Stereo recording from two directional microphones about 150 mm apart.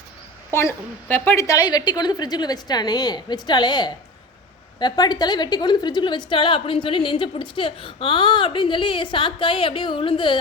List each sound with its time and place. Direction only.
0.5 s a woman's voice: 15° left (ahead or behind); by 10.3 s 35° left (ahead or behind)